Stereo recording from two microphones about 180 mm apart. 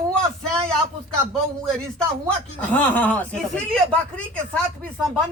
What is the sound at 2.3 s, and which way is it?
Speech, 10° left (ahead or behind).